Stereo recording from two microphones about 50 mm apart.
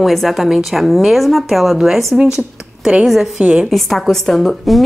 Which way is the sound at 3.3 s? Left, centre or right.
Centre.